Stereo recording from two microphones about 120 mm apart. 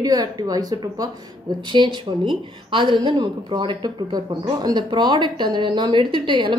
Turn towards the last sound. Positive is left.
turn(degrees=-40)  # may be behind; listen again after turning